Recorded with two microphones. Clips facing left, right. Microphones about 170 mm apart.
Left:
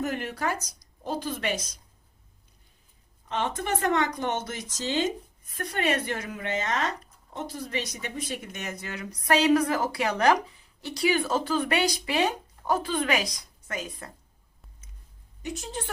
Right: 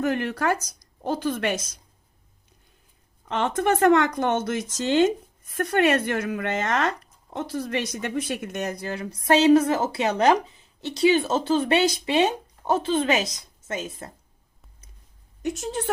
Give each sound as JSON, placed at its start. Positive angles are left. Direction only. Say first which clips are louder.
{"t": 0.0, "sound": "speech", "louder": "right 5 dB", "side_deg": -70}
{"t": 3.2, "sound": "speech", "louder": "right 6 dB", "side_deg": -55}
{"t": 7.3, "sound": "speech", "louder": "right 5 dB", "side_deg": -70}
{"t": 8.5, "sound": "speech", "louder": "right 7 dB", "side_deg": -35}